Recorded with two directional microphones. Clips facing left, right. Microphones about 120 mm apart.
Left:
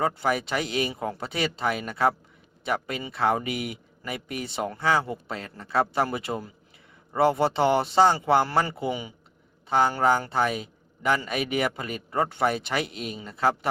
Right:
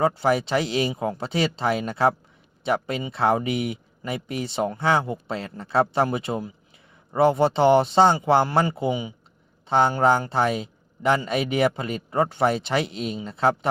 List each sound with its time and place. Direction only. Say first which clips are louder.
0.0 s a man's voice: right 4 dB; 30° right (ahead or behind)